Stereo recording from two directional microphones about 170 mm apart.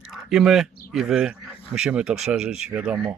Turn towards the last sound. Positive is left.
turn(degrees=-5)  # may be behind; listen again after turning